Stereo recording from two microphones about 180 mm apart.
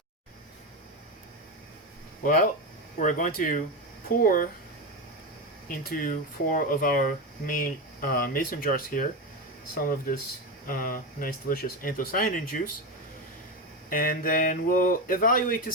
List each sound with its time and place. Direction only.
2.2 s speech: 50° left (ahead or behind)
5.6 s speech: 50° left (ahead or behind)
13.9 s speech: 50° left (ahead or behind)